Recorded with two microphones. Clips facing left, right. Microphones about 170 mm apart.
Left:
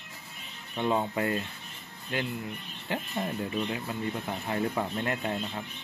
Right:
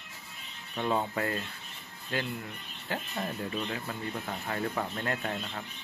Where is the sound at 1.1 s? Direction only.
20° left (ahead or behind).